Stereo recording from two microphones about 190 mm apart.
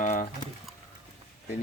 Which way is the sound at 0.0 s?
45° left (ahead or behind).